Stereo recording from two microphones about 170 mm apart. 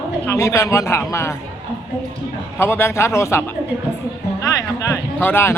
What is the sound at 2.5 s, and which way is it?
Speech, 15° left (ahead or behind).